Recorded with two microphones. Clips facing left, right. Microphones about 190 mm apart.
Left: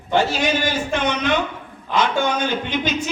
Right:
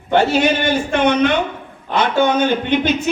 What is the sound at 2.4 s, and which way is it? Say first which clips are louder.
Speech: right 6 dB; 60° right (ahead or behind).